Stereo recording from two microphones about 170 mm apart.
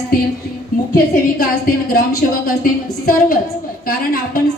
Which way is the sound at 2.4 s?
55° left (ahead or behind).